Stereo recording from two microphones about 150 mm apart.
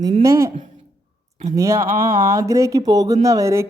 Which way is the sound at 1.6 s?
20° right (ahead or behind).